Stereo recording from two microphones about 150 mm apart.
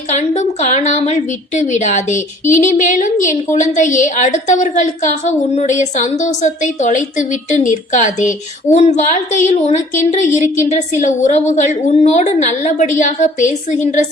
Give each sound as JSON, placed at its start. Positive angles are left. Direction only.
{"t": 0.1, "sound": "a woman's voice", "side_deg": 50}